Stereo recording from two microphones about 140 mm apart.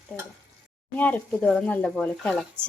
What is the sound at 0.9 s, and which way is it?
Speech, 10° left (ahead or behind).